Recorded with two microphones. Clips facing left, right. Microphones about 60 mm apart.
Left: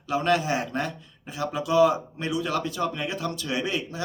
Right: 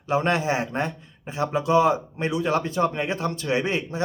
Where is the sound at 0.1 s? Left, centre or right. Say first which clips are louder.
Right 1 dB; right.